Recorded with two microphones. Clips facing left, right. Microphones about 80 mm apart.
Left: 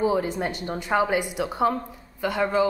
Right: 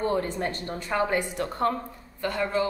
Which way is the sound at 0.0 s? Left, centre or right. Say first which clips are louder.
Left 3 dB; centre.